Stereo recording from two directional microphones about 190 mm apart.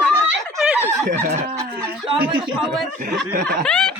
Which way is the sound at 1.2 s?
40° right (ahead or behind).